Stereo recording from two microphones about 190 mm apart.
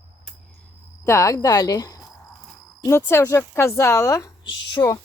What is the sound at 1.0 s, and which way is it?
Speech, 15° left (ahead or behind).